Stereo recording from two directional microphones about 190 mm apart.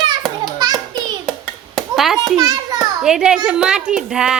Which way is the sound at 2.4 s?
20° right (ahead or behind).